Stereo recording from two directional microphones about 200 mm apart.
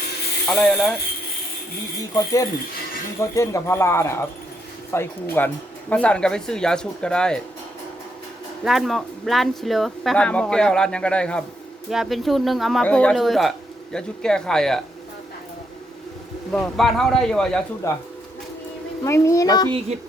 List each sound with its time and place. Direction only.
0.4 s speech: 5° left (ahead or behind)
2.0 s speech: 15° left (ahead or behind)
8.6 s speech: centre (ahead or behind)
16.5 s speech: centre (ahead or behind)
19.0 s speech: 15° left (ahead or behind)